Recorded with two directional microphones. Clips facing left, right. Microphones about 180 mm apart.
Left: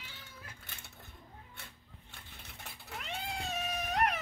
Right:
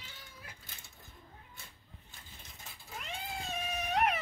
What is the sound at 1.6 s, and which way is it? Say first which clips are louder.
Cat: left 4 dB; 65° left (ahead or behind).